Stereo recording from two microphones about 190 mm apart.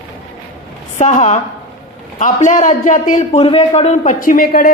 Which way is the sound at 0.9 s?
40° left (ahead or behind).